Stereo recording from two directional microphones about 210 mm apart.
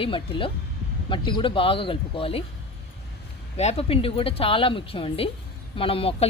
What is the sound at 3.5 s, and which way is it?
Speech, 30° left (ahead or behind).